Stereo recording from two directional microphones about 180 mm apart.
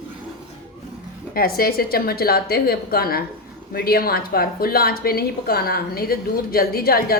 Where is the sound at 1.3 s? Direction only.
55° left (ahead or behind).